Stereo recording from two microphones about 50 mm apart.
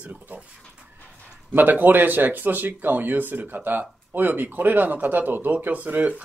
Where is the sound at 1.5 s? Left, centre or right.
Right.